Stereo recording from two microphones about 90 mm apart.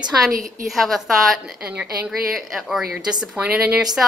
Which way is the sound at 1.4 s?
15° right (ahead or behind).